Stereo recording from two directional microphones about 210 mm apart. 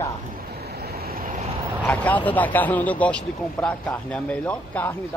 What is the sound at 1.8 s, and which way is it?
Speech, 5° left (ahead or behind).